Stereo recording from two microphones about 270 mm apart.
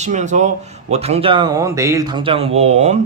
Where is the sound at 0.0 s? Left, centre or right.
Right.